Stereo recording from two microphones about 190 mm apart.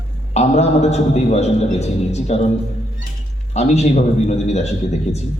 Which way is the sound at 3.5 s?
35° left (ahead or behind).